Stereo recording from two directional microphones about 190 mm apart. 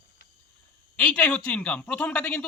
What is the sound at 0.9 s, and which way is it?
Speech, 5° left (ahead or behind).